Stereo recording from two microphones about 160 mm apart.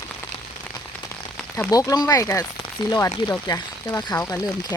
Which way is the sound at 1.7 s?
20° left (ahead or behind).